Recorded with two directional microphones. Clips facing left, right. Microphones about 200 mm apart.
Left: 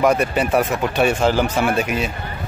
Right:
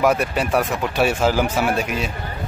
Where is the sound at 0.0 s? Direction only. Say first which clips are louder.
Left 2 dB; centre (ahead or behind).